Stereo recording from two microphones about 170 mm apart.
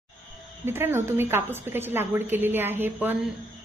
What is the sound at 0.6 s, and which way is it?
A woman's voice, 15° right (ahead or behind).